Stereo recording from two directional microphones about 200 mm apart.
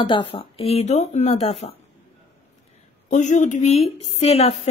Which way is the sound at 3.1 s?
35° left (ahead or behind).